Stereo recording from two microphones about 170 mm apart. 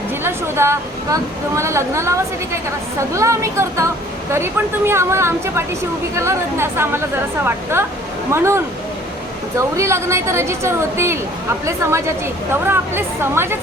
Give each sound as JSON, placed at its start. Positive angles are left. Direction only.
{"t": 0.2, "sound": "speech", "side_deg": -15}